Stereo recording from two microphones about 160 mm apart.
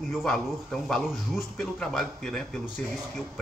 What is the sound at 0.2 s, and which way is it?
Speech, 5° left (ahead or behind).